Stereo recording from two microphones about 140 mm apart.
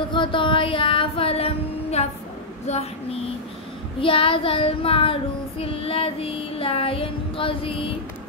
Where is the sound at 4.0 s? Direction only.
40° left (ahead or behind).